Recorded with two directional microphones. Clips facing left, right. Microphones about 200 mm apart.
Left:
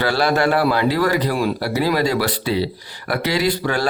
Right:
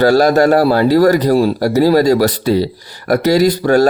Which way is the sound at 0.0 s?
45° right (ahead or behind).